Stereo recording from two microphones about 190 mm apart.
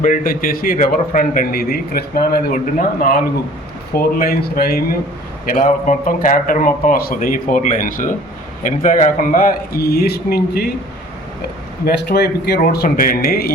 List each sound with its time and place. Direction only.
0.0 s a man's voice: 45° left (ahead or behind)
11.9 s a man's voice: 55° left (ahead or behind)